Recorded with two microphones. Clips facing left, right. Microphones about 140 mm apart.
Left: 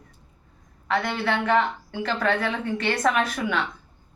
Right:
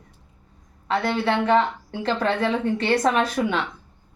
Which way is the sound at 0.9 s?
30° right (ahead or behind).